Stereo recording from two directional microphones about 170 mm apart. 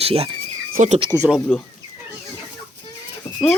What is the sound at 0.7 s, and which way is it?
Speech, 45° right (ahead or behind).